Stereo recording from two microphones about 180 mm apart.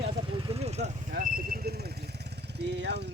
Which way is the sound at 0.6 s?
35° right (ahead or behind).